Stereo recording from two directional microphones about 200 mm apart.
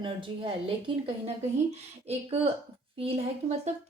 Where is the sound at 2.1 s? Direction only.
30° right (ahead or behind).